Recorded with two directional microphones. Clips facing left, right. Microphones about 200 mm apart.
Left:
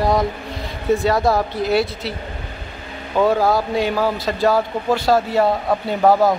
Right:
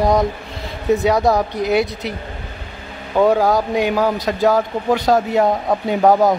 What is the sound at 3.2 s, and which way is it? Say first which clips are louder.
A man's voice: right 2 dB; 15° right (ahead or behind).